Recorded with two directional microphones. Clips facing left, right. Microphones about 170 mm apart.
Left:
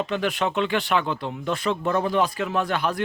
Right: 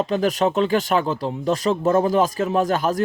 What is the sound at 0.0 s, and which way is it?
Speech, 40° right (ahead or behind).